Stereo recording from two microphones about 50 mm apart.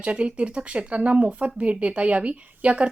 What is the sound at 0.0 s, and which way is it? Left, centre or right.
Speech, right.